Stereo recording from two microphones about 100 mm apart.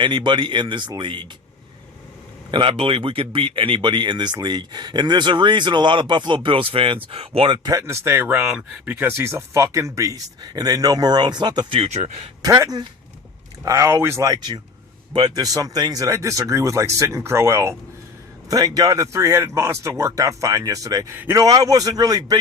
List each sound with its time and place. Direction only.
0.0 s speech: 50° right (ahead or behind)
2.5 s speech: 55° right (ahead or behind)
7.7 s speech: 30° right (ahead or behind)
8.4 s speech: 10° right (ahead or behind); by 10.2 s 30° right (ahead or behind)
10.4 s speech: 40° right (ahead or behind)
11.8 s speech: 90° right
12.4 s speech: 35° right (ahead or behind)
13.7 s speech: 30° right (ahead or behind)
15.1 s speech: 45° right (ahead or behind)
18.4 s speech: 40° right (ahead or behind)